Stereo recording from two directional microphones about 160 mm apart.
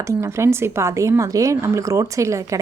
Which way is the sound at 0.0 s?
15° right (ahead or behind).